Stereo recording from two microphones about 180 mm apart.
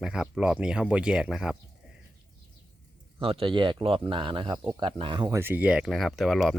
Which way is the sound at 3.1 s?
30° right (ahead or behind).